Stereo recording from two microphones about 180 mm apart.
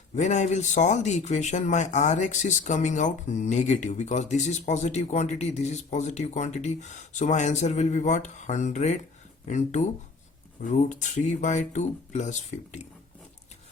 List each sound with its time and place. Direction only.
0.2 s speech: 40° left (ahead or behind)